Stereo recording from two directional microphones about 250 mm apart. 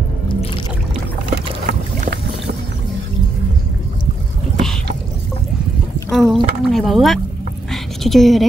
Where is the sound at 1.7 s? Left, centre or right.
Right.